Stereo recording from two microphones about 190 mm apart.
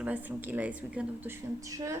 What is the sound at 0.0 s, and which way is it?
A woman's voice, 10° right (ahead or behind).